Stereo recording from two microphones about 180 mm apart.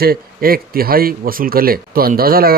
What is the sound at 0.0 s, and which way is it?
A man's voice, 55° right (ahead or behind).